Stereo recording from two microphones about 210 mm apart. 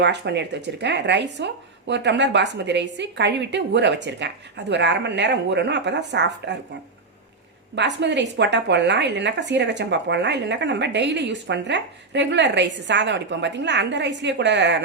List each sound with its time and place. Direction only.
0.0 s a woman's voice: 55° right (ahead or behind)
7.8 s a woman's voice: 55° right (ahead or behind)